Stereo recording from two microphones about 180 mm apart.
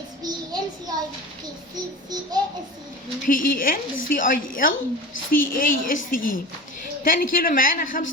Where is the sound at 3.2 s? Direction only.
50° left (ahead or behind).